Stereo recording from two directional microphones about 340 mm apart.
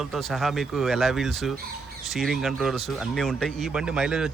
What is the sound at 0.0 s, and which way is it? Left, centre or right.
Speech, centre.